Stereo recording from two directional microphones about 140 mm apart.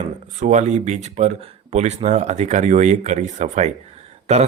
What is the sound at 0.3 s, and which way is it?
Speech, 60° right (ahead or behind).